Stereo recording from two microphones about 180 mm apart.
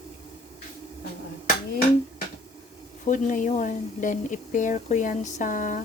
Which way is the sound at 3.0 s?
45° left (ahead or behind).